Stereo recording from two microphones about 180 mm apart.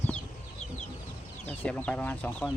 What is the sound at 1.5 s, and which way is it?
Speech, 5° left (ahead or behind).